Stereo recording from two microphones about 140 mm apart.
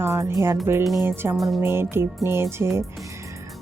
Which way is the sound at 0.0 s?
20° right (ahead or behind).